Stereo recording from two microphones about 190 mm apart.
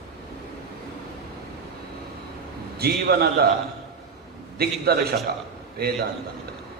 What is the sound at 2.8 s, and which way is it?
Speech, 55° right (ahead or behind).